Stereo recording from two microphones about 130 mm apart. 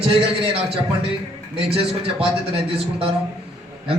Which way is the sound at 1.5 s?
50° right (ahead or behind).